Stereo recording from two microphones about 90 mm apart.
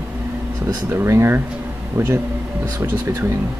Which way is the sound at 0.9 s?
30° right (ahead or behind).